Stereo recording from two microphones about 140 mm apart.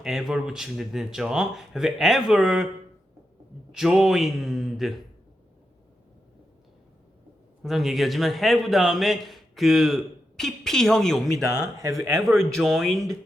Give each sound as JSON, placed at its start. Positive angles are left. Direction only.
{"t": 0.0, "sound": "a man's voice", "side_deg": 0}
{"t": 3.7, "sound": "a man's voice", "side_deg": 0}
{"t": 7.6, "sound": "a man's voice", "side_deg": 0}
{"t": 11.4, "sound": "speech", "side_deg": -25}
{"t": 12.2, "sound": "a man's voice", "side_deg": 5}